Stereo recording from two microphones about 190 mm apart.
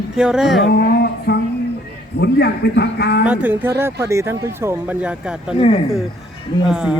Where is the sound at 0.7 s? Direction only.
55° left (ahead or behind).